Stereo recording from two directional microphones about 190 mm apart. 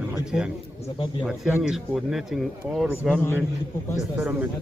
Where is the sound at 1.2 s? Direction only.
5° right (ahead or behind).